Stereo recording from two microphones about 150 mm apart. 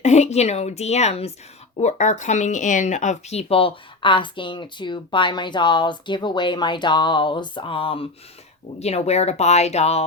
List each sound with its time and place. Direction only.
0.0 s a woman's voice: 50° left (ahead or behind)